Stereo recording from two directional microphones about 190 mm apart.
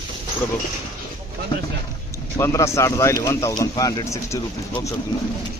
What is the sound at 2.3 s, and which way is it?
Speech, 15° left (ahead or behind).